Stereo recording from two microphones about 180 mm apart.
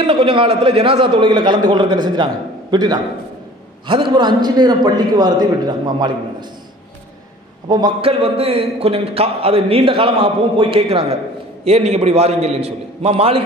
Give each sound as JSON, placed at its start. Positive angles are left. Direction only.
{"t": 0.0, "sound": "a man's voice", "side_deg": -30}
{"t": 7.6, "sound": "a man's voice", "side_deg": -25}